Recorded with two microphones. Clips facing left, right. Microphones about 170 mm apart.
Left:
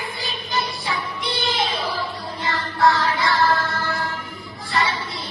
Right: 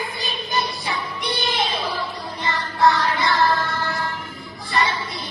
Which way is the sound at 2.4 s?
20° right (ahead or behind).